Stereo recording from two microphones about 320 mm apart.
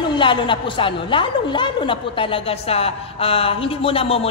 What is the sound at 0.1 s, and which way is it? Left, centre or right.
A woman's voice, centre.